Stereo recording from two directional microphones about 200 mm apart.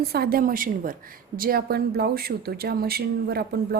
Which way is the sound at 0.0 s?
50° right (ahead or behind).